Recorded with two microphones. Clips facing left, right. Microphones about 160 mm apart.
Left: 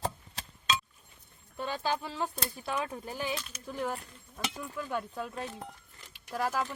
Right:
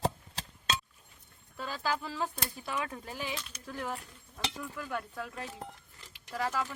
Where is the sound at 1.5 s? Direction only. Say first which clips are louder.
Left 2 dB; 20° left (ahead or behind).